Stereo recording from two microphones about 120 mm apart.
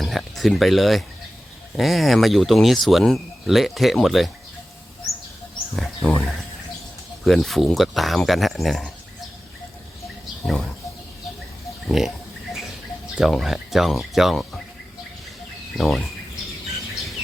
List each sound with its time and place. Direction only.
0.0 s speech: centre (ahead or behind)
5.7 s a sound: centre (ahead or behind)
7.3 s speech: centre (ahead or behind)
10.4 s speech: centre (ahead or behind)
11.9 s speech: 5° right (ahead or behind)
13.1 s speech: centre (ahead or behind)
15.8 s speech: centre (ahead or behind)